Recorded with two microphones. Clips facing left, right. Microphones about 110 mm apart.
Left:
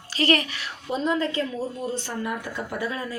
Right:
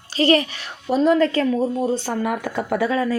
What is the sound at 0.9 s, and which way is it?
Speech, 75° right (ahead or behind).